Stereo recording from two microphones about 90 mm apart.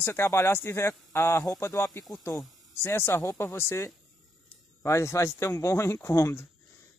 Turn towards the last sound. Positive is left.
turn(degrees=35)  # may be behind; listen again after turning